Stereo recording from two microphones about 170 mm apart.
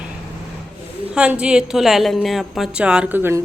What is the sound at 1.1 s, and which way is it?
A woman's voice, 5° right (ahead or behind).